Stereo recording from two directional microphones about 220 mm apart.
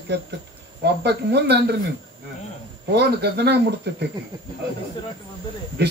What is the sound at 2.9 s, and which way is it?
Speech, 50° right (ahead or behind).